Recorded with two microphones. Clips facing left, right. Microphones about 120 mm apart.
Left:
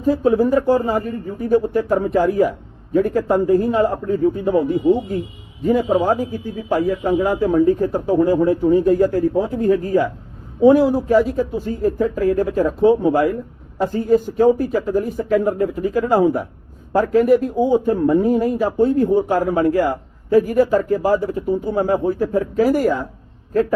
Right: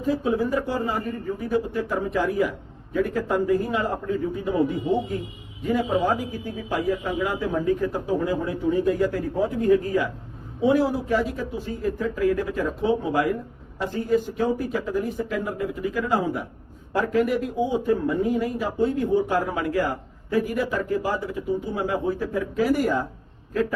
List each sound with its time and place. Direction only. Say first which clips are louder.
0.0 s a man's voice: left 8 dB; 40° left (ahead or behind)